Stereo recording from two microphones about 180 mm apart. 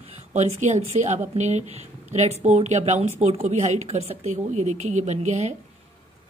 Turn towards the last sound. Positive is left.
turn(degrees=-40)  # may be behind; listen again after turning